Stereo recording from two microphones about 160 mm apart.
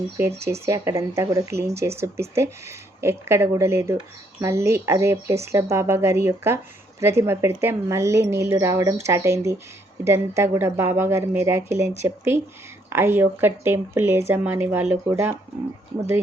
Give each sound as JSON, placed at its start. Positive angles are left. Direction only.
{"t": 0.2, "sound": "speech", "side_deg": -15}